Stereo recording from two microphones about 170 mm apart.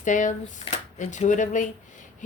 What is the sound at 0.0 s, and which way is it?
Speech, 45° left (ahead or behind).